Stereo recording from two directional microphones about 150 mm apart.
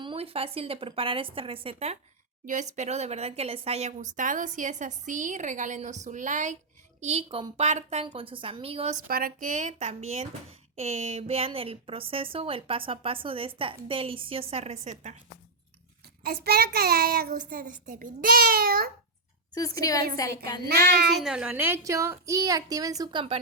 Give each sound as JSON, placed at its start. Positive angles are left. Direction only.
{"t": 0.0, "sound": "a woman's voice", "side_deg": -40}
{"t": 2.4, "sound": "speech", "side_deg": -55}
{"t": 7.0, "sound": "a woman's voice", "side_deg": -45}
{"t": 8.0, "sound": "a woman's voice", "side_deg": -35}
{"t": 9.0, "sound": "a woman's voice", "side_deg": -75}
{"t": 16.2, "sound": "a child's voice", "side_deg": -90}
{"t": 19.5, "sound": "a woman's voice", "side_deg": 25}
{"t": 20.6, "sound": "child singing", "side_deg": -90}
{"t": 21.2, "sound": "a woman's voice", "side_deg": -5}